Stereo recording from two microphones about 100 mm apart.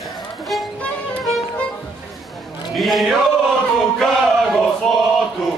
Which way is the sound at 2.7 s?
Centre (ahead or behind).